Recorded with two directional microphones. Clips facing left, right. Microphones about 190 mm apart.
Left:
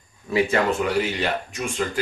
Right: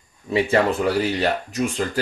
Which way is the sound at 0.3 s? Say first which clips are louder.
Right 2 dB; 35° right (ahead or behind).